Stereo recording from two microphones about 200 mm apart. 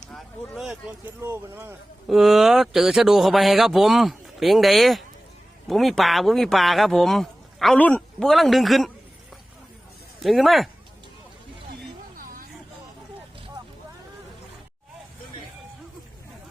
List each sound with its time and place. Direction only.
0.1 s speech: centre (ahead or behind)
2.0 s speech: centre (ahead or behind)
10.2 s speech: centre (ahead or behind)
12.1 s a sound: 45° right (ahead or behind)